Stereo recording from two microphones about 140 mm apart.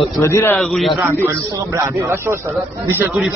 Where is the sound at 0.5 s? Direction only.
Centre (ahead or behind).